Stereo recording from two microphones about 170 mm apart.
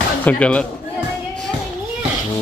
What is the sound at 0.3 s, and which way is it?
Speech, 5° left (ahead or behind).